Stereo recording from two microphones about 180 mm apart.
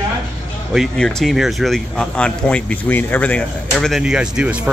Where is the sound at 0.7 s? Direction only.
5° left (ahead or behind).